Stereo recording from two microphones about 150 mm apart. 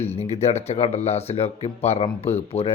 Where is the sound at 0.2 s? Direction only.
45° left (ahead or behind).